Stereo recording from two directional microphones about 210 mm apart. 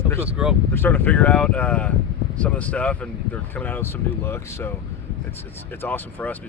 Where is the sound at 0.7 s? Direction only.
10° left (ahead or behind).